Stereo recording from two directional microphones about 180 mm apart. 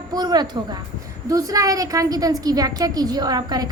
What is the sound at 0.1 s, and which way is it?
A woman's voice, 20° right (ahead or behind).